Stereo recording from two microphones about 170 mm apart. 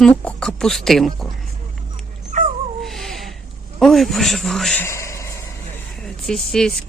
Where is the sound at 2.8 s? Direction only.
Centre (ahead or behind).